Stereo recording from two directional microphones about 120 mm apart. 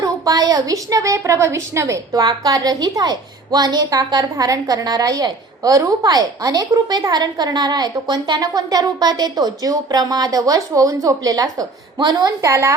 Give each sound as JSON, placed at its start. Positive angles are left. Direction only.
{"t": 0.0, "sound": "a woman's voice", "side_deg": -30}